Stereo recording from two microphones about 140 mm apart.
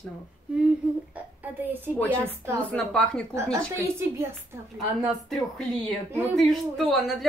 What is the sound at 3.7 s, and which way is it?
Speech, 20° right (ahead or behind).